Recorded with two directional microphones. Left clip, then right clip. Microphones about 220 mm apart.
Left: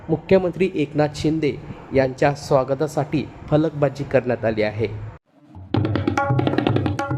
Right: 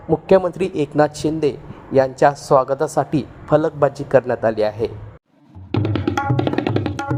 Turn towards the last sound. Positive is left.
turn(degrees=-25)  # may be behind; listen again after turning